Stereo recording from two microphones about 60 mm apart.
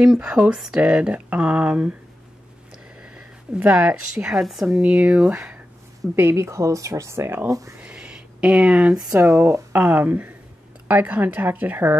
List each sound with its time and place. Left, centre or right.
0.0 s speech: centre
3.0 s speech: centre
4.4 s speech: centre
4.6 s speech: right
6.1 s speech: right
7.4 s speech: right
7.8 s a sound: centre
9.2 s a woman's voice: right